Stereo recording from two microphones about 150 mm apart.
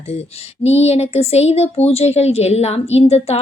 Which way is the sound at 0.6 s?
45° left (ahead or behind).